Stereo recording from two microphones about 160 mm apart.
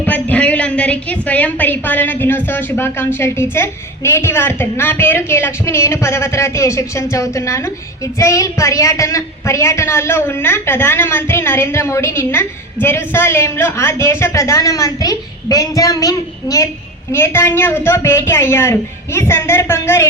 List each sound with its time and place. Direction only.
0.0 s a woman's voice: 10° left (ahead or behind)